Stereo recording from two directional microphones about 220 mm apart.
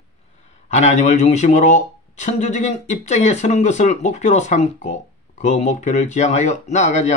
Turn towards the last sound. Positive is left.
turn(degrees=30)  # may be behind; listen again after turning